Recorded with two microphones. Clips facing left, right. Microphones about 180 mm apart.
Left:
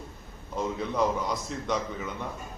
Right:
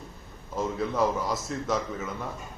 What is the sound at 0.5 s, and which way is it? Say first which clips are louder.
A man's voice: right 1 dB; 5° right (ahead or behind).